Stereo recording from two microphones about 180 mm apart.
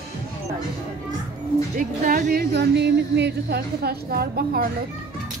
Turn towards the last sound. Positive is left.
turn(degrees=-60)  # may be behind; listen again after turning